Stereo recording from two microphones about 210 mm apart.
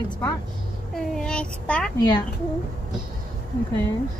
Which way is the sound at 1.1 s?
5° left (ahead or behind).